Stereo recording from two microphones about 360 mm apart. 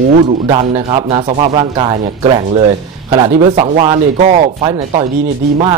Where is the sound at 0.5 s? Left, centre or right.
Centre.